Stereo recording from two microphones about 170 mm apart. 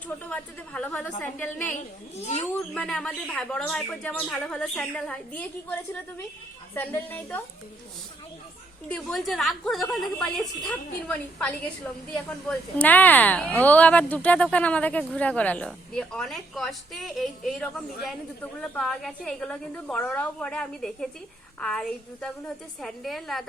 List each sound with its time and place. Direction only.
0.3 s speech: 5° left (ahead or behind)
2.1 s speech: 40° left (ahead or behind)
2.6 s speech: 5° left (ahead or behind)
8.9 s a woman's voice: 5° left (ahead or behind)